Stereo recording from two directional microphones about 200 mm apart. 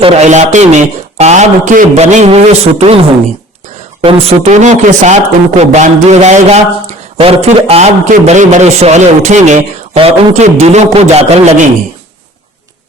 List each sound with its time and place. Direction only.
0.0 s a man's voice: 35° right (ahead or behind)
4.0 s a man's voice: 30° right (ahead or behind)